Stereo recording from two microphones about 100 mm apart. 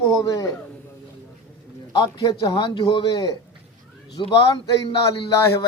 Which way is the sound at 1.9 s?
40° left (ahead or behind).